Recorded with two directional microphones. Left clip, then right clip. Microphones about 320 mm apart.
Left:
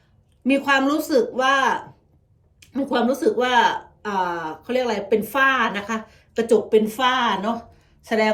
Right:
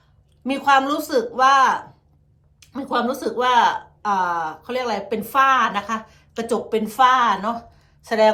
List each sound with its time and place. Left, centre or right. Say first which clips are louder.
0.4 s speech: right 2 dB; right